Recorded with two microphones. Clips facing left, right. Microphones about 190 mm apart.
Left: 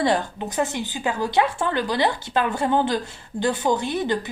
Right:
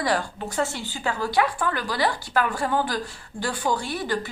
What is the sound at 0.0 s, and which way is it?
A woman's voice, 20° left (ahead or behind).